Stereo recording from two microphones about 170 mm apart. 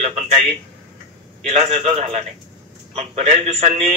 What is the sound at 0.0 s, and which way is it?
A man's voice, 40° right (ahead or behind).